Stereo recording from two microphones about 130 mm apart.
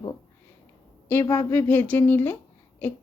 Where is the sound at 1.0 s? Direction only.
15° left (ahead or behind).